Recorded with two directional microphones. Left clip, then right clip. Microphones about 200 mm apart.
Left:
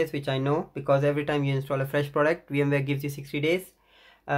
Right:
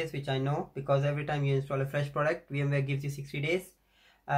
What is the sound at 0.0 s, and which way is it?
Speech, 55° left (ahead or behind).